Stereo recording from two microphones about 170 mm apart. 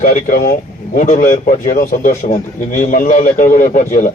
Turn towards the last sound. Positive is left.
turn(degrees=50)  # may be behind; listen again after turning